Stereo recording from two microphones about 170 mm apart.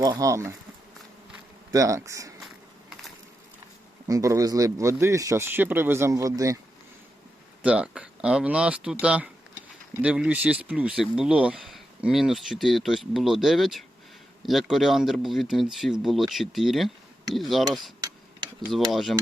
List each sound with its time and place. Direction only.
0.0 s speech: 20° right (ahead or behind)
1.7 s speech: 20° right (ahead or behind)
4.0 s speech: 20° right (ahead or behind)
7.6 s speech: 5° right (ahead or behind)